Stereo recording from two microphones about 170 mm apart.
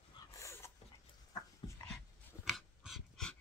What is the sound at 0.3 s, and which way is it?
Dog, 15° left (ahead or behind).